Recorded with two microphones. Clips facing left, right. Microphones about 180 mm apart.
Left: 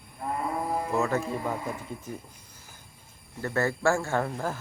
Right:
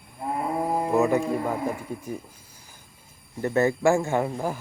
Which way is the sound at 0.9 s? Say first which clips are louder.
Right 6 dB; 15° right (ahead or behind).